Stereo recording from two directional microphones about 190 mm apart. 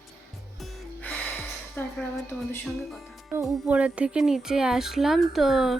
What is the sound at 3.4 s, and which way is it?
Speech, 5° right (ahead or behind).